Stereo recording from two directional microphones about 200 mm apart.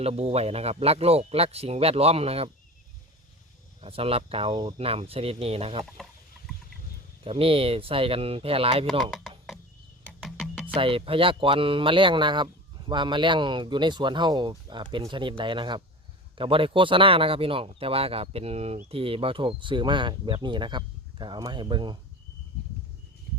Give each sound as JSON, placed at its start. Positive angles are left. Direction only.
{"t": 0.0, "sound": "speech", "side_deg": -30}
{"t": 3.8, "sound": "speech", "side_deg": -30}
{"t": 7.3, "sound": "speech", "side_deg": -25}
{"t": 8.9, "sound": "speech", "side_deg": 0}
{"t": 10.2, "sound": "music", "side_deg": 0}
{"t": 10.8, "sound": "speech", "side_deg": -25}